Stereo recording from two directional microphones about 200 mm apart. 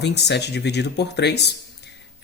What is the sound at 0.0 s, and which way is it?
Speech, 55° left (ahead or behind).